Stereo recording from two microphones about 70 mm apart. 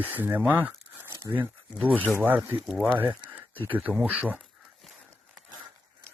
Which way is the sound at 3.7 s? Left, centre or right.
Right.